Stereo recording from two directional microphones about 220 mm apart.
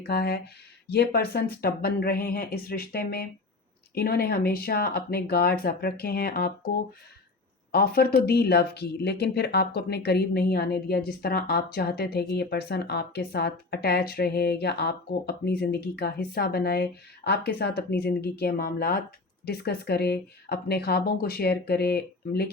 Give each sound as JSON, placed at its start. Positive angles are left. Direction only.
{"t": 0.1, "sound": "speech", "side_deg": 45}
{"t": 7.7, "sound": "speech", "side_deg": 45}